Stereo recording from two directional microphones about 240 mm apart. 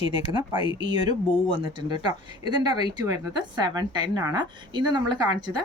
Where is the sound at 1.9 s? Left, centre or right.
Centre.